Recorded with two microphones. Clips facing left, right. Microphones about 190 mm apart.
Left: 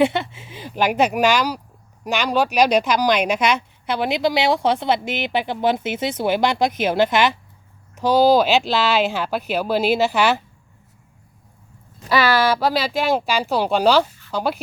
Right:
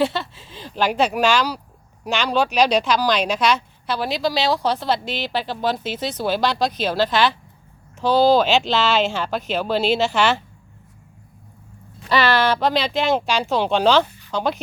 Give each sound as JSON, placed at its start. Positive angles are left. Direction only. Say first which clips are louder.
{"t": 0.0, "sound": "a woman's voice", "louder": "left 3 dB", "side_deg": 20}
{"t": 12.0, "sound": "speech", "louder": "left 1 dB", "side_deg": 10}